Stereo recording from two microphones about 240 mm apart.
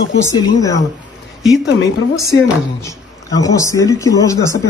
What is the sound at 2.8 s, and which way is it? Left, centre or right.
Speech, centre.